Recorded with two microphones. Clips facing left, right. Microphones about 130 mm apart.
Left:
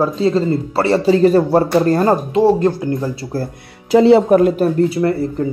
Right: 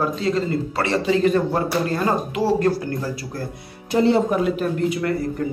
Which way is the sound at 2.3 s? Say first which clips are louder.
Left 6 dB; 25° left (ahead or behind).